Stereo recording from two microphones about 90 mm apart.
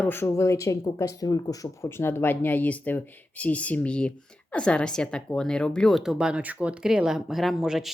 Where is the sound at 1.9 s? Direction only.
25° left (ahead or behind); by 6.1 s centre (ahead or behind).